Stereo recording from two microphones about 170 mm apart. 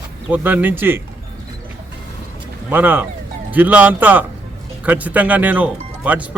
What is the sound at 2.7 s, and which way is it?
A man's voice, 10° right (ahead or behind).